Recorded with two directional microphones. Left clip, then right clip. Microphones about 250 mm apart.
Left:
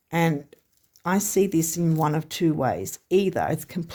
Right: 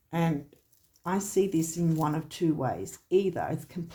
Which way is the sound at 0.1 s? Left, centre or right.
Left.